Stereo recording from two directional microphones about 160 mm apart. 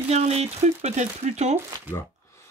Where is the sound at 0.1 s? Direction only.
40° right (ahead or behind).